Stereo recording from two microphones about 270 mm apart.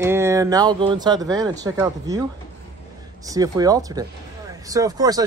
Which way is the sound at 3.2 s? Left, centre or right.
Centre.